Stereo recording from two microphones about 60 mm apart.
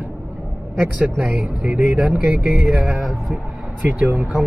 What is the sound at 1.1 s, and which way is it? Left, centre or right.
Speech, right.